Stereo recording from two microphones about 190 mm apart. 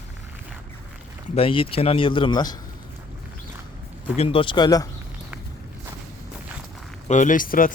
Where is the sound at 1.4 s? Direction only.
30° left (ahead or behind).